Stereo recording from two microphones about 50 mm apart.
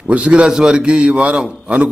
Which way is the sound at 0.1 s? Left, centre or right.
Right.